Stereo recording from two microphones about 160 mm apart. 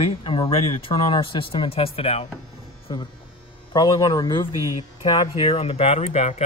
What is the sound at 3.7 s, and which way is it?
A man's voice, 25° left (ahead or behind).